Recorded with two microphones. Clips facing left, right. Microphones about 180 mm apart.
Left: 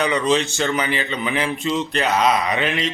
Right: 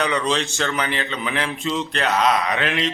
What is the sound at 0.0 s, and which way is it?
A man's voice, 5° left (ahead or behind).